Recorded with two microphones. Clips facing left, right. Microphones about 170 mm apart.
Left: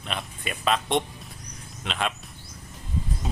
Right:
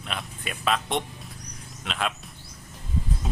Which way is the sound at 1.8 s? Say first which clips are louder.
Left 1 dB; centre (ahead or behind).